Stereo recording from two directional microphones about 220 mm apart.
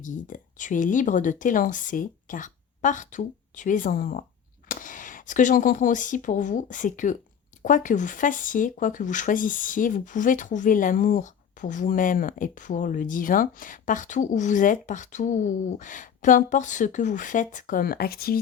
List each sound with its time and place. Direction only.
0.0 s speech: 35° left (ahead or behind)